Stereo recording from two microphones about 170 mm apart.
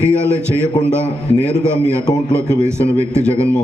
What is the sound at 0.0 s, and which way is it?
A man's voice, 15° right (ahead or behind).